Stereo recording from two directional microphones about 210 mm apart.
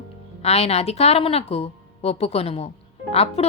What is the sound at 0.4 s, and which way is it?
A woman's voice, 30° left (ahead or behind).